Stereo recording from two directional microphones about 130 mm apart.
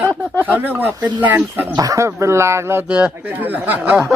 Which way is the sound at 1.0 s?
15° right (ahead or behind).